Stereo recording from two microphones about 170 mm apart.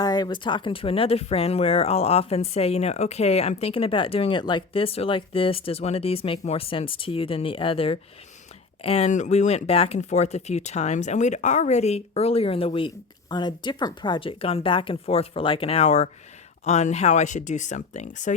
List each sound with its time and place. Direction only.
0.0 s speech: 25° left (ahead or behind); by 18.3 s 45° left (ahead or behind)